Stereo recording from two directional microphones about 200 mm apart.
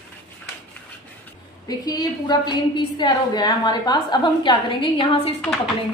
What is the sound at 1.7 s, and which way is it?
A woman's voice, 20° left (ahead or behind).